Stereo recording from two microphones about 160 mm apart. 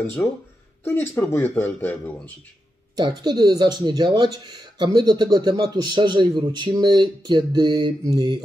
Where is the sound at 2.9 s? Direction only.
25° right (ahead or behind).